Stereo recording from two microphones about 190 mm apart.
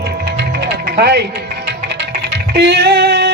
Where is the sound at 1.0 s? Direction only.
60° right (ahead or behind).